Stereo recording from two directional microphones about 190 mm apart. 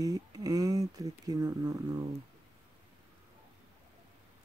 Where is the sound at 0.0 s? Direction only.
20° right (ahead or behind).